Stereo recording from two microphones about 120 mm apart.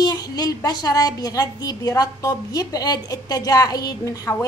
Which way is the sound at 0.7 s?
35° left (ahead or behind).